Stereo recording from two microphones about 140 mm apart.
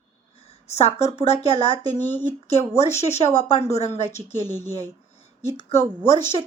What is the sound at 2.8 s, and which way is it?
A woman's voice, 50° left (ahead or behind).